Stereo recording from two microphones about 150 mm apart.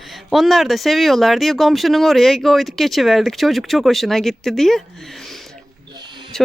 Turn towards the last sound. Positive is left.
turn(degrees=5)  # may be behind; listen again after turning